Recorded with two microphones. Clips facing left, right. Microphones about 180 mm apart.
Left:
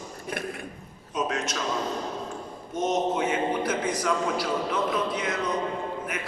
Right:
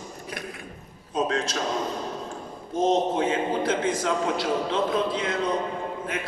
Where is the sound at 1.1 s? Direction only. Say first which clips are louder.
Right 3 dB; 30° right (ahead or behind).